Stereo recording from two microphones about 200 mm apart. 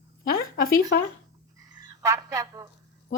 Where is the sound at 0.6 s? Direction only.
50° left (ahead or behind).